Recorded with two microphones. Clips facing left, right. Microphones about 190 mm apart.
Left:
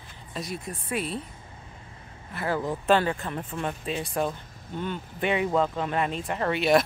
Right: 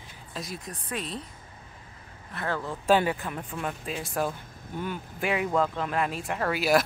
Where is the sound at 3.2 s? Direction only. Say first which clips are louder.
Left 2 dB; centre (ahead or behind).